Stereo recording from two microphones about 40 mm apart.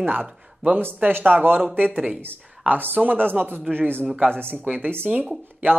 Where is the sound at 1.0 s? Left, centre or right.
Right.